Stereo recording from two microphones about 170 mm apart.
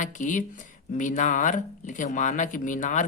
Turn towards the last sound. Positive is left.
turn(degrees=45)  # may be behind; listen again after turning